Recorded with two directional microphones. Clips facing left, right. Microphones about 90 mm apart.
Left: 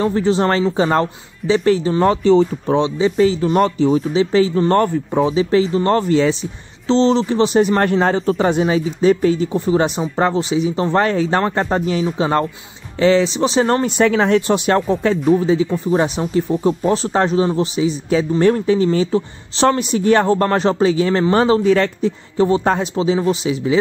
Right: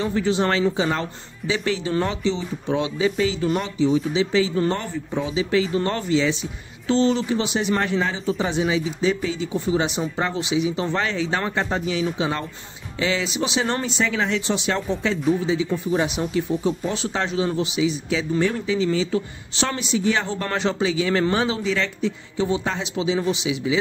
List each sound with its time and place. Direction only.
0.0 s speech: 40° left (ahead or behind)
2.7 s speech: 35° left (ahead or behind)
3.5 s speech: 50° left (ahead or behind)
4.6 s speech: 55° left (ahead or behind)
5.2 s speech: 35° left (ahead or behind)
6.9 s speech: 30° left (ahead or behind); by 14.8 s 50° left (ahead or behind)
14.8 s speech: 40° left (ahead or behind)
19.1 s speech: 35° left (ahead or behind)